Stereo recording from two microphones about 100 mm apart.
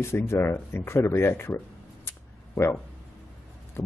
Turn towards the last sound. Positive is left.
turn(degrees=25)  # may be behind; listen again after turning